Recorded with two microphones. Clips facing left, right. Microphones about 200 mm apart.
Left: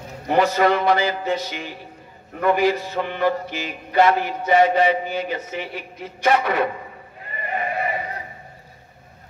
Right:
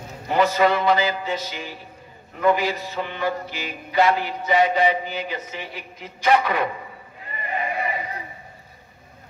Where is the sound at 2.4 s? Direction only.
50° left (ahead or behind).